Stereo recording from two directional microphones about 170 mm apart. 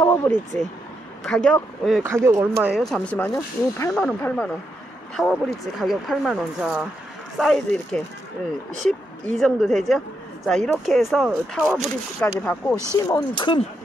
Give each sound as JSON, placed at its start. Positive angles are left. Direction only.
{"t": 0.0, "sound": "speech", "side_deg": 15}
{"t": 1.2, "sound": "speech", "side_deg": 5}
{"t": 2.0, "sound": "speech", "side_deg": -15}
{"t": 2.8, "sound": "speech", "side_deg": 0}
{"t": 3.2, "sound": "speech", "side_deg": 15}
{"t": 9.4, "sound": "speech", "side_deg": 0}
{"t": 12.2, "sound": "speech", "side_deg": 10}
{"t": 12.9, "sound": "speech", "side_deg": 25}